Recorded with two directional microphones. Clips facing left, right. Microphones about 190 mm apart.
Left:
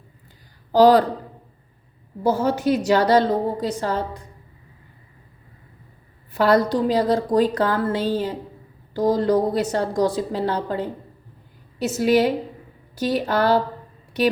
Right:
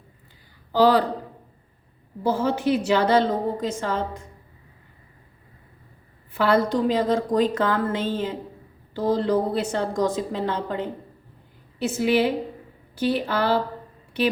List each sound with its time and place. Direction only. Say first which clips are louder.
0.7 s speech: left 4 dB; 40° left (ahead or behind)
2.2 s a woman's voice: left 2 dB; 40° left (ahead or behind)
6.3 s a woman's voice: left 3 dB; 40° left (ahead or behind)